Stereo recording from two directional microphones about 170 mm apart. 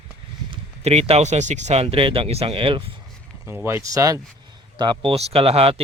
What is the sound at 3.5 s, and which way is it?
Speech, 15° right (ahead or behind).